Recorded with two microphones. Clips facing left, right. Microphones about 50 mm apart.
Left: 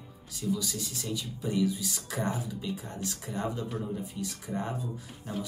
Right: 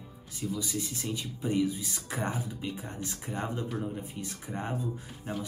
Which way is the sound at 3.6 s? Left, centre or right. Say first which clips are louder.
Right 1 dB; centre.